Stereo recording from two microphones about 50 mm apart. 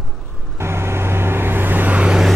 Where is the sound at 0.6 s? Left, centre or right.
Right.